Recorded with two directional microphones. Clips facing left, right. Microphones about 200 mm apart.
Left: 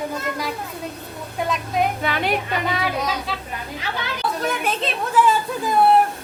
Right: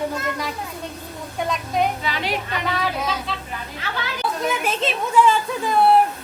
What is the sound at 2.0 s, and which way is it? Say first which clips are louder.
Speech: left 3 dB; 55° left (ahead or behind).